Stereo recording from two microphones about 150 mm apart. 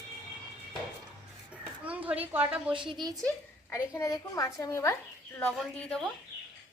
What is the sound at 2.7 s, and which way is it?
Speech, 35° right (ahead or behind).